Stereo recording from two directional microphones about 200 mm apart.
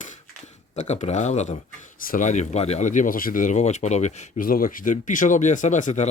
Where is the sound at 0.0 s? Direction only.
35° left (ahead or behind).